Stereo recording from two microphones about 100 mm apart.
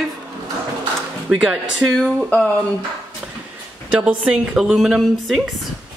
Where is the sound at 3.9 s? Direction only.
10° right (ahead or behind).